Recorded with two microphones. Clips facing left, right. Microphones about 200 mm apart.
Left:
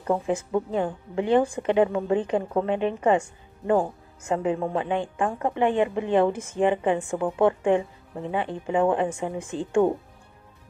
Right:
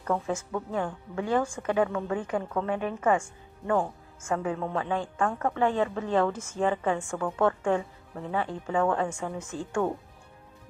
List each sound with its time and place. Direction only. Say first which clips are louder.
0.0 s a woman's voice: left 4 dB; 15° left (ahead or behind)